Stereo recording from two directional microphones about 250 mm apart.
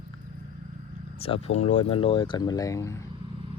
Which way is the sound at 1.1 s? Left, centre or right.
Left.